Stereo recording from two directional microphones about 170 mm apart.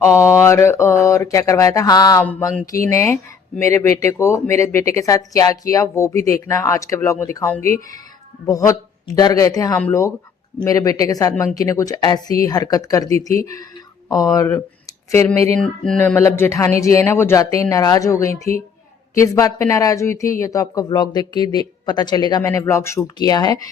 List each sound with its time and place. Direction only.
0.0 s speech: 15° left (ahead or behind)
2.2 s speech: 10° left (ahead or behind)
8.4 s speech: 20° left (ahead or behind)
15.6 s speech: 5° left (ahead or behind); by 23.6 s 20° left (ahead or behind)